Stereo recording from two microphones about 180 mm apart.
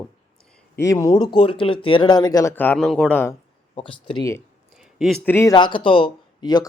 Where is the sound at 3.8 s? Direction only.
25° left (ahead or behind).